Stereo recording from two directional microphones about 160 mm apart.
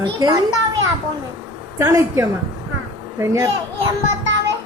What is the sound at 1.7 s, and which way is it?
A woman's voice, 20° right (ahead or behind).